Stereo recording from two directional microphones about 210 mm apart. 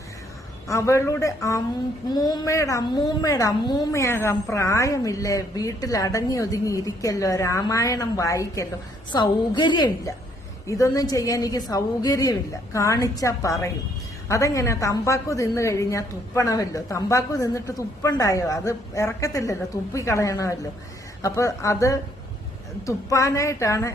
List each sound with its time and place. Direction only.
0.7 s a woman's voice: 15° left (ahead or behind)